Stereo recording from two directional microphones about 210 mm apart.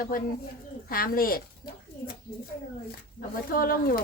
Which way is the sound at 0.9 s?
45° left (ahead or behind).